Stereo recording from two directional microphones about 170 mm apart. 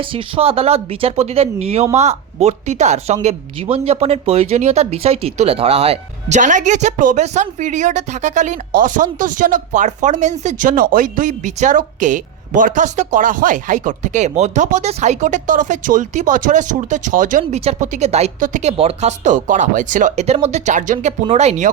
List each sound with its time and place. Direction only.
0.0 s speech: 30° right (ahead or behind)